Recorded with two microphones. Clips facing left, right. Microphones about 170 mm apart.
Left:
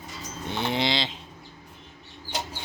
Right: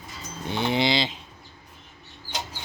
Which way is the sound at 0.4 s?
Centre (ahead or behind).